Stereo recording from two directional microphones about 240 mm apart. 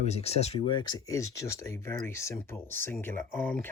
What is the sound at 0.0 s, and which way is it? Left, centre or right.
Speech, left.